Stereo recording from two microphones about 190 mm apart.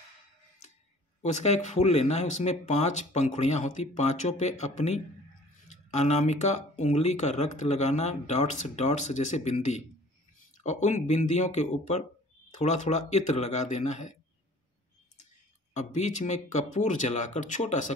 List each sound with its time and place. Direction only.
1.2 s speech: 35° left (ahead or behind)
15.7 s speech: 40° left (ahead or behind)